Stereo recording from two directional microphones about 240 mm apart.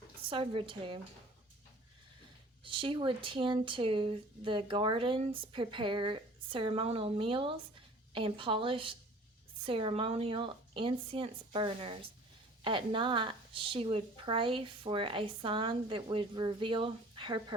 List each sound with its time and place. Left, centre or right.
0.3 s speech: right
2.6 s speech: right